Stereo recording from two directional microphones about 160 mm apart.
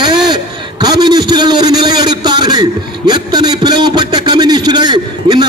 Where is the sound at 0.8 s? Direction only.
25° right (ahead or behind).